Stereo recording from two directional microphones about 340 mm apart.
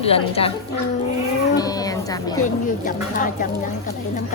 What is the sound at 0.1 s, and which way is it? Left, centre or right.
Speech, centre.